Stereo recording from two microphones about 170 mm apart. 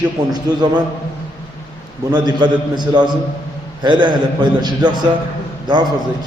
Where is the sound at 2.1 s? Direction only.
25° right (ahead or behind).